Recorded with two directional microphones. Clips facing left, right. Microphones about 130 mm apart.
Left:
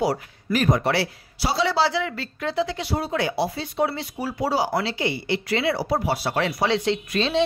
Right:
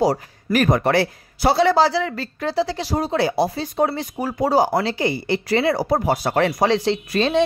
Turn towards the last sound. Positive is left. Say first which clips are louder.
# right 4 dB
turn(degrees=-45)  # may be behind; listen again after turning